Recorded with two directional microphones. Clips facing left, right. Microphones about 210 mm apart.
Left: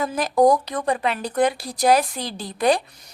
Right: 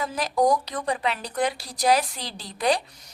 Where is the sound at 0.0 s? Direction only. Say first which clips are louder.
Left 5 dB; 50° left (ahead or behind).